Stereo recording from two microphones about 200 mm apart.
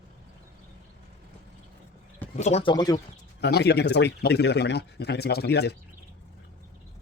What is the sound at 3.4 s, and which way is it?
Speech, 55° left (ahead or behind).